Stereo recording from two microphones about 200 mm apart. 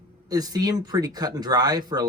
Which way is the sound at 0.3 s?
20° right (ahead or behind).